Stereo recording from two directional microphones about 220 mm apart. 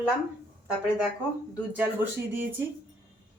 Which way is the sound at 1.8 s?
10° right (ahead or behind).